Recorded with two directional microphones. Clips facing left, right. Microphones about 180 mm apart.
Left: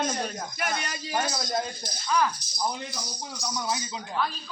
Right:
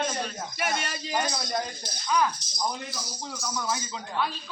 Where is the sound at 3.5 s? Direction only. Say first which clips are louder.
Even; 15° left (ahead or behind).